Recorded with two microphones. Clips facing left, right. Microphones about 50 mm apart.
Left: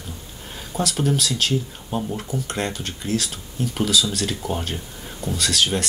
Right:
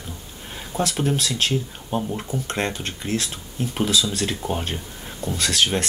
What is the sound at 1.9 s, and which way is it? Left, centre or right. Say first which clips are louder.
Speech: right 2 dB; centre.